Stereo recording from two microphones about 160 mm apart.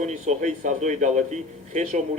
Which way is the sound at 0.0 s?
45° right (ahead or behind).